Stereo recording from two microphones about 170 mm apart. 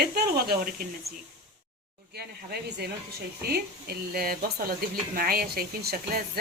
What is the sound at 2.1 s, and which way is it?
Speech, 70° right (ahead or behind).